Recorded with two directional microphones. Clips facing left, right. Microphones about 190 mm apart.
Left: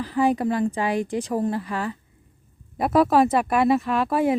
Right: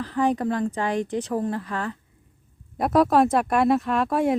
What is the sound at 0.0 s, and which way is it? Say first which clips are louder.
A woman's voice: left 2 dB; 10° left (ahead or behind).